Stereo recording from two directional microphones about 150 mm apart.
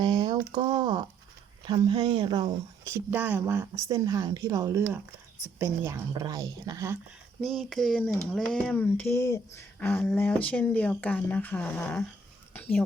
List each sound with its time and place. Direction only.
0.0 s speech: 35° right (ahead or behind)
7.4 s speech: centre (ahead or behind)
12.5 s a sound: 10° left (ahead or behind)